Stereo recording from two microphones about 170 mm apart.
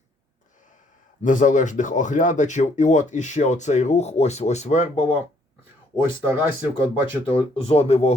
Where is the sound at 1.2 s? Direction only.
50° left (ahead or behind).